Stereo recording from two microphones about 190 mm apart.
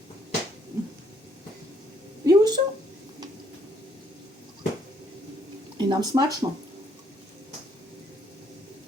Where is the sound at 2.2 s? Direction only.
20° right (ahead or behind).